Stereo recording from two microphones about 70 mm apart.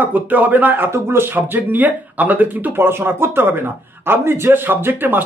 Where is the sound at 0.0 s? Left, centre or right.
Right.